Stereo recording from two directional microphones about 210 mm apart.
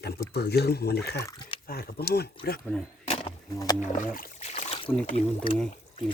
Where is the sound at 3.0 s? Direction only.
30° left (ahead or behind).